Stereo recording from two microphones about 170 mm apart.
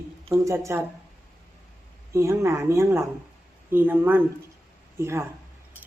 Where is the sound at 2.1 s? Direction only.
15° right (ahead or behind).